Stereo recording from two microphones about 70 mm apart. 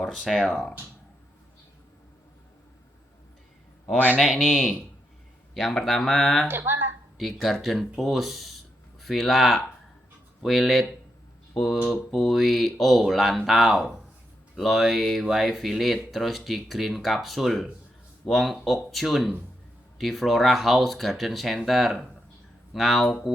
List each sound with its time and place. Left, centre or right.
0.3 s speech: centre
4.2 s speech: centre
6.5 s a sound: right
7.2 s speech: centre
11.9 s speech: centre